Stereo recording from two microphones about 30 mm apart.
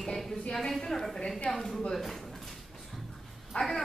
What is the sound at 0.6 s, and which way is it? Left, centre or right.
A woman's voice, centre.